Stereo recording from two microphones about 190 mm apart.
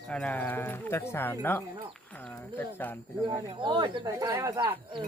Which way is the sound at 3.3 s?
25° right (ahead or behind).